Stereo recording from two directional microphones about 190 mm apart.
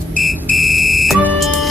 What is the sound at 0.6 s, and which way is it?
Fire alarm, centre (ahead or behind).